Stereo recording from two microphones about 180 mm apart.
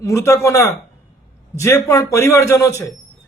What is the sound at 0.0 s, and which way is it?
A man's voice, 15° left (ahead or behind).